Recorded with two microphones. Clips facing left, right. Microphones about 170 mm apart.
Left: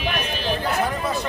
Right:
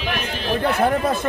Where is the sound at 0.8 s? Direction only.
55° right (ahead or behind).